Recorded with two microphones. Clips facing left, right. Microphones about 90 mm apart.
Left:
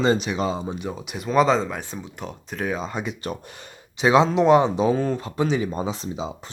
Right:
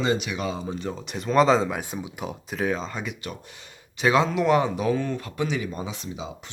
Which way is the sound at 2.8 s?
20° left (ahead or behind).